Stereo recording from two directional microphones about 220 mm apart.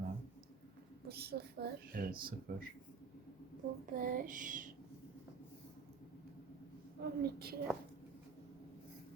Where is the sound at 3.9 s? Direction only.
40° right (ahead or behind).